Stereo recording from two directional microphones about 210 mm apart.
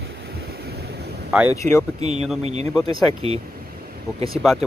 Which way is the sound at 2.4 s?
30° right (ahead or behind).